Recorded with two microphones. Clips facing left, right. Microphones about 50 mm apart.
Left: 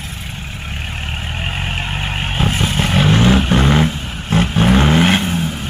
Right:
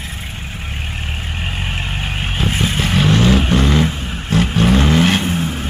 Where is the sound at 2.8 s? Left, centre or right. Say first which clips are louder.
Left 1 dB; left.